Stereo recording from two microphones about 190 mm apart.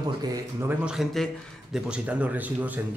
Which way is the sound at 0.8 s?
Centre (ahead or behind).